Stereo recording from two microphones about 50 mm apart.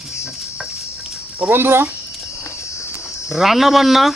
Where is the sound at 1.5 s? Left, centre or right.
Right.